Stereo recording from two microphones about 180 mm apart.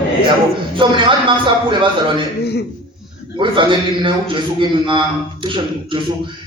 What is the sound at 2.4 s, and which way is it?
Speech, 65° left (ahead or behind).